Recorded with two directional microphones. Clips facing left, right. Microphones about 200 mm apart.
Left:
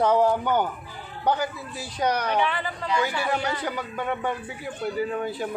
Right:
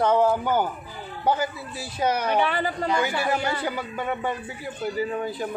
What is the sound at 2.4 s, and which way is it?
Speech, 40° right (ahead or behind).